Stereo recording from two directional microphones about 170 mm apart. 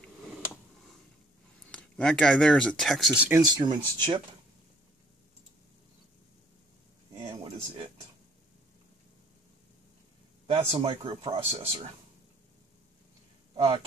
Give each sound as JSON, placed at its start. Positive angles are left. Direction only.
{"t": 1.7, "sound": "speech", "side_deg": 5}
{"t": 3.3, "sound": "speech", "side_deg": -20}
{"t": 7.2, "sound": "a sound", "side_deg": -30}
{"t": 10.4, "sound": "speech", "side_deg": -30}